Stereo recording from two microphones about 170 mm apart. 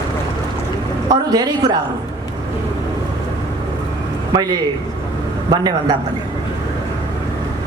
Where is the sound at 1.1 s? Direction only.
20° right (ahead or behind).